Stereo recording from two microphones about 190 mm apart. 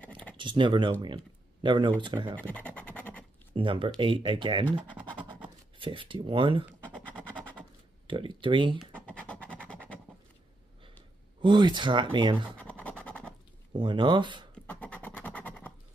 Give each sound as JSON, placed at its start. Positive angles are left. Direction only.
{"t": 0.4, "sound": "speech", "side_deg": -25}
{"t": 2.3, "sound": "scratch", "side_deg": 10}
{"t": 3.5, "sound": "speech", "side_deg": -25}
{"t": 6.9, "sound": "scratch", "side_deg": 5}
{"t": 8.1, "sound": "speech", "side_deg": -25}
{"t": 8.7, "sound": "scratch", "side_deg": 5}
{"t": 11.4, "sound": "speech", "side_deg": -25}
{"t": 12.5, "sound": "scratch", "side_deg": 5}
{"t": 13.7, "sound": "speech", "side_deg": -25}
{"t": 14.5, "sound": "a sound", "side_deg": 5}